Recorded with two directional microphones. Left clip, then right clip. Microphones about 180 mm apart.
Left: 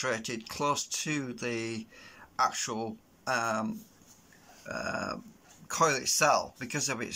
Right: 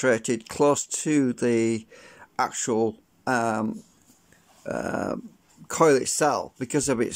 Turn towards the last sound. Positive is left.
turn(degrees=-45)  # may be behind; listen again after turning